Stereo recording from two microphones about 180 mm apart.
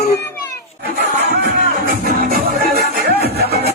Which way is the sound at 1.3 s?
55° right (ahead or behind).